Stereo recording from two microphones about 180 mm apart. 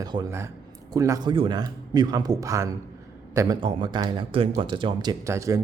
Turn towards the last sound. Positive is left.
turn(degrees=-15)  # may be behind; listen again after turning